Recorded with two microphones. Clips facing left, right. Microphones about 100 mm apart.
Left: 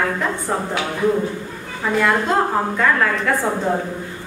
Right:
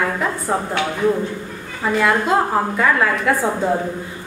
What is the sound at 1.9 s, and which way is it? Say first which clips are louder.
A woman's voice: right 1 dB; 5° right (ahead or behind).